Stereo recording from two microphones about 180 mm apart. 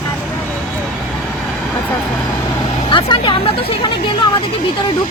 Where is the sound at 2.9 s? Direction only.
25° left (ahead or behind).